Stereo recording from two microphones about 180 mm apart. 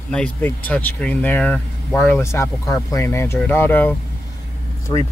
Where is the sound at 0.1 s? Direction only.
10° left (ahead or behind).